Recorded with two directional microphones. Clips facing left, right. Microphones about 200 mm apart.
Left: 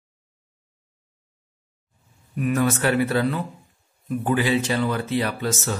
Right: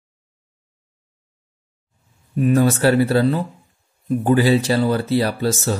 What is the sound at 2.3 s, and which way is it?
Speech, 30° right (ahead or behind).